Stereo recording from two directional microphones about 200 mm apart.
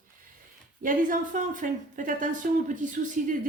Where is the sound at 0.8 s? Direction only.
40° right (ahead or behind).